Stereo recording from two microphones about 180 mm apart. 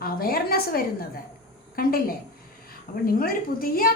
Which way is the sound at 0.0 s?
55° left (ahead or behind).